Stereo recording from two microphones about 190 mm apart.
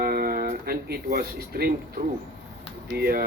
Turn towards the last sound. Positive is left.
turn(degrees=-55)  # may be behind; listen again after turning